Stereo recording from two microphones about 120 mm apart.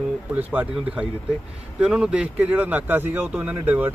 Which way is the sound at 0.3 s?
15° right (ahead or behind).